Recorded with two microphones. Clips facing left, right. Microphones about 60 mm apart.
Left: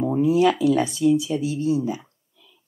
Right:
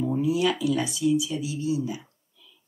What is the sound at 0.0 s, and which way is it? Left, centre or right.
Speech, left.